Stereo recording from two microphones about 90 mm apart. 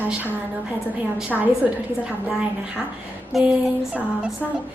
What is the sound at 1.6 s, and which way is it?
Speech, 15° right (ahead or behind).